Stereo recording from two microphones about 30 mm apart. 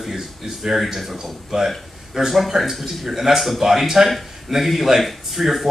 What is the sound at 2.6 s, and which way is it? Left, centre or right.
Speech, centre.